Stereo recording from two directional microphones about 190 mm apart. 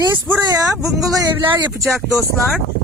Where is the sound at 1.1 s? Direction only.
20° right (ahead or behind).